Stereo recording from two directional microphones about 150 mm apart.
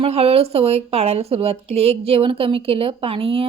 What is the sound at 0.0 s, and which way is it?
Speech, 40° right (ahead or behind).